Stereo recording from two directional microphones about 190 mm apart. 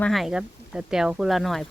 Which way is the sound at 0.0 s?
Centre (ahead or behind).